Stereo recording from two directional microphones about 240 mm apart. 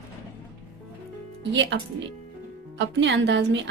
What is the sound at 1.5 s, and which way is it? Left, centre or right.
Speech, right.